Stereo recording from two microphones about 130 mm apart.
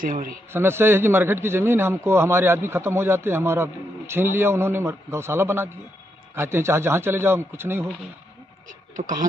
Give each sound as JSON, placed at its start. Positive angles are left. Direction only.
{"t": 0.0, "sound": "a man's voice", "side_deg": -90}
{"t": 0.5, "sound": "a man's voice", "side_deg": -20}